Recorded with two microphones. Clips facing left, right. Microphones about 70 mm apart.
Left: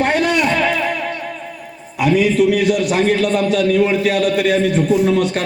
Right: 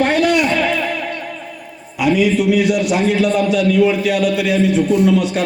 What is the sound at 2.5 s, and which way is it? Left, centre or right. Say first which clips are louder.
A man's voice: right 1 dB; left.